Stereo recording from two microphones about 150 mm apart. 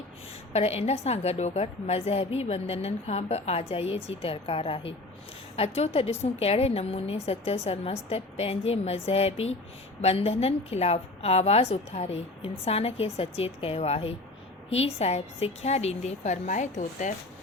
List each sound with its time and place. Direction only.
0.5 s a woman's voice: 45° left (ahead or behind)